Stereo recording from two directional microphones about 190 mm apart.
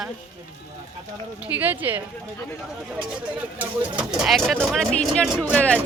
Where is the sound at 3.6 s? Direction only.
5° right (ahead or behind).